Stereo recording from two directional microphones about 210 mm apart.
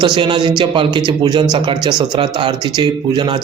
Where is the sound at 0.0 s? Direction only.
20° right (ahead or behind).